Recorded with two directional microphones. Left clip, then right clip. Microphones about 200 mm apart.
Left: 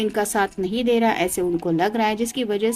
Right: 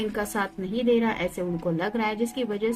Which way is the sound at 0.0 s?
50° left (ahead or behind).